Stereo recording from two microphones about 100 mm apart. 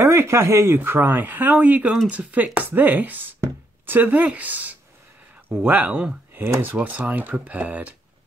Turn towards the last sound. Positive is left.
turn(degrees=-15)  # may be behind; listen again after turning